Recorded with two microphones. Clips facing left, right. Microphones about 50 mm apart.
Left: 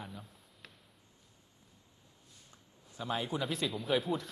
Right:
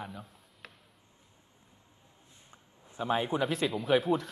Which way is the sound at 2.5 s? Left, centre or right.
Right.